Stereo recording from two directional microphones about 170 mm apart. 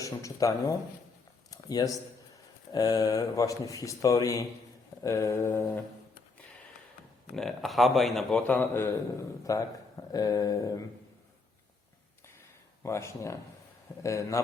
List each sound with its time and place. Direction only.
0.0 s speech: 20° left (ahead or behind)
1.5 s a sound: 20° left (ahead or behind)
2.7 s speech: 20° left (ahead or behind)
5.0 s mantra: 15° left (ahead or behind)
7.3 s speech: centre (ahead or behind)
9.4 s speech: 20° left (ahead or behind)
12.8 s mantra: 15° left (ahead or behind)